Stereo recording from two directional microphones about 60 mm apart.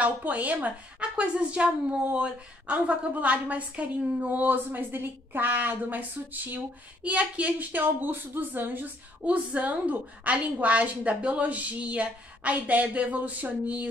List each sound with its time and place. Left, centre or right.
0.0 s a woman's voice: right
7.8 s a woman's voice: right